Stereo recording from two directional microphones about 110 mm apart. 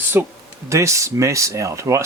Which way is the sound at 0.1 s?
20° right (ahead or behind).